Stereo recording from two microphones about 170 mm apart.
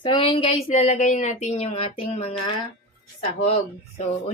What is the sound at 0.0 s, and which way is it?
Speech, 30° left (ahead or behind).